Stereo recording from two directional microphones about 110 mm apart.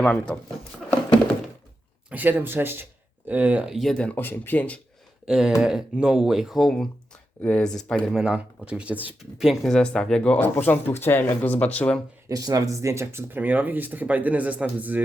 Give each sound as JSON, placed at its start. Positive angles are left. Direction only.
{"t": 0.0, "sound": "speech", "side_deg": 10}
{"t": 2.0, "sound": "speech", "side_deg": -15}
{"t": 3.7, "sound": "speech", "side_deg": 0}
{"t": 5.2, "sound": "speech", "side_deg": -5}
{"t": 8.2, "sound": "speech", "side_deg": -10}
{"t": 9.4, "sound": "speech", "side_deg": 0}
{"t": 12.3, "sound": "speech", "side_deg": -35}